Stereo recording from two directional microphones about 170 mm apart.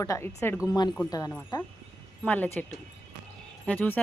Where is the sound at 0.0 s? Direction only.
20° left (ahead or behind).